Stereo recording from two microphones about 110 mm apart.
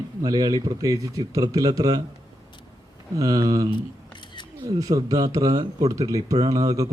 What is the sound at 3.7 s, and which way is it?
Camera, 45° left (ahead or behind).